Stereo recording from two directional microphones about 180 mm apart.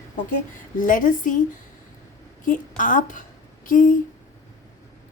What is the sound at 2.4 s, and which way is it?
A woman's voice, 45° left (ahead or behind).